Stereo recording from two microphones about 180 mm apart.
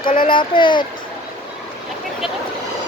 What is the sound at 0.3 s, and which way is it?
Speech, 25° left (ahead or behind).